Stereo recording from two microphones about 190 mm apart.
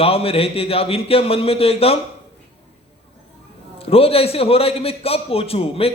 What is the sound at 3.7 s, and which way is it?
A man's voice, 30° left (ahead or behind).